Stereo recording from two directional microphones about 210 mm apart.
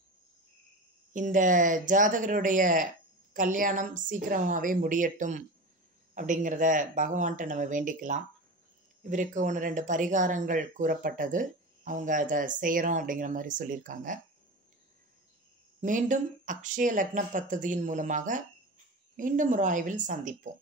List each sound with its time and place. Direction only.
1.1 s speech: 40° right (ahead or behind)
15.8 s speech: 35° right (ahead or behind)